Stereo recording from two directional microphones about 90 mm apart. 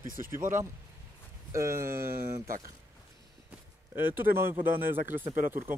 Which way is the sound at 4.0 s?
25° right (ahead or behind).